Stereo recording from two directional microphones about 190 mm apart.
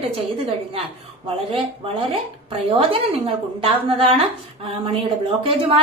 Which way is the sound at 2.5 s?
30° right (ahead or behind).